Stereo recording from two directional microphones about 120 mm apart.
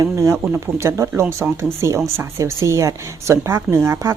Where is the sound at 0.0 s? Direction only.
25° right (ahead or behind).